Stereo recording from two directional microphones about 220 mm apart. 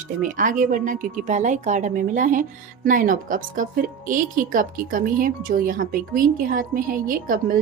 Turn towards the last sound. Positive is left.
turn(degrees=-40)  # may be behind; listen again after turning